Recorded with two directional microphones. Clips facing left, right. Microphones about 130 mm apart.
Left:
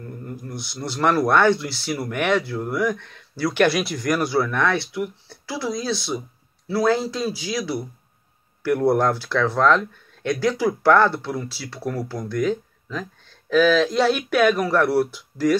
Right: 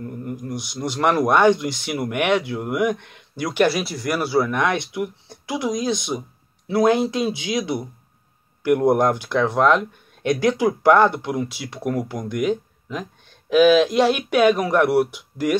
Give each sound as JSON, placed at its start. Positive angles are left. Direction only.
{"t": 0.2, "sound": "speech", "side_deg": -15}
{"t": 3.6, "sound": "speech", "side_deg": -5}